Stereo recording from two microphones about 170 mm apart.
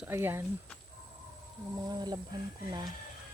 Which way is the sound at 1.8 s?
25° right (ahead or behind).